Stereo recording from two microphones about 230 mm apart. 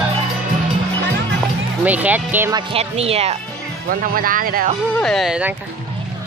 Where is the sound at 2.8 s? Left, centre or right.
Right.